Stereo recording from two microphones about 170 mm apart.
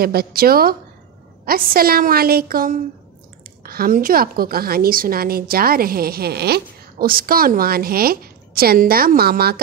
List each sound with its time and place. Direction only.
0.0 s a woman's voice: 65° right (ahead or behind)